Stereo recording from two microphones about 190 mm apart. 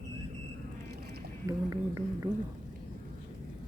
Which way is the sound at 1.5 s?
15° right (ahead or behind).